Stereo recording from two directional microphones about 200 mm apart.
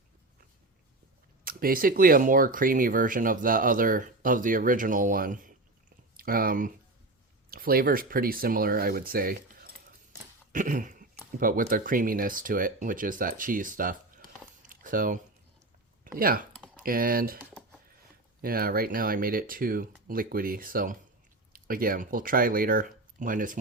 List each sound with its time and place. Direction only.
1.5 s speech: 45° right (ahead or behind)
14.7 s biting: 45° right (ahead or behind)
16.1 s speech: 45° right (ahead or behind)
18.4 s speech: 45° right (ahead or behind)